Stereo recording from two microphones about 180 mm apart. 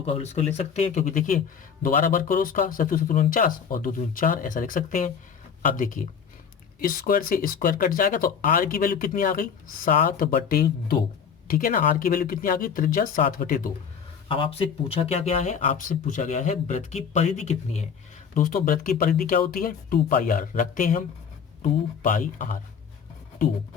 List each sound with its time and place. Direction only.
0.0 s speech: 35° left (ahead or behind); by 13.6 s 50° left (ahead or behind)
14.3 s speech: 30° left (ahead or behind)
18.3 s speech: 50° left (ahead or behind)